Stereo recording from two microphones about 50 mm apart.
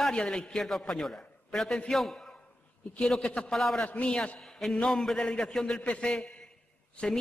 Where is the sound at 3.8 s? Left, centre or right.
Left.